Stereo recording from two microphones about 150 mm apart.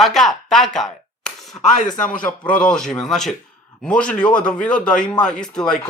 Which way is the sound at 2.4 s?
10° left (ahead or behind).